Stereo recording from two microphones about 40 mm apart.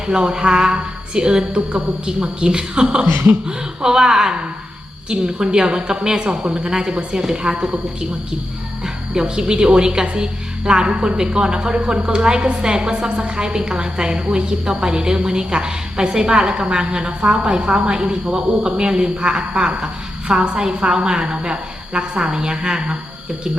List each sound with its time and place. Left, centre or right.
0.1 s a woman's voice: right
8.8 s a woman's voice: centre